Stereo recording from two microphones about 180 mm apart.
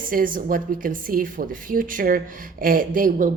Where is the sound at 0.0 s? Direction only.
50° right (ahead or behind).